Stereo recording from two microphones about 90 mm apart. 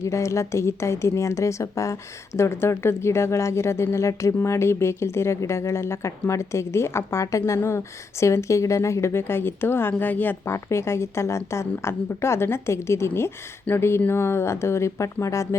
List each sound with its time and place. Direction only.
0.0 s a woman's voice: 35° left (ahead or behind)